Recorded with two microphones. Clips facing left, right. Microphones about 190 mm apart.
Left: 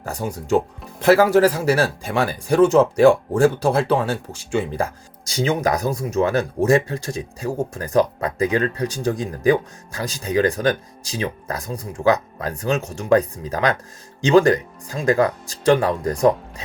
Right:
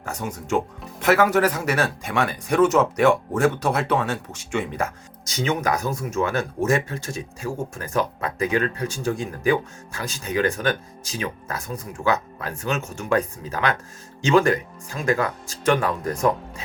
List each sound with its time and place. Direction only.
0.0 s speech: 35° left (ahead or behind)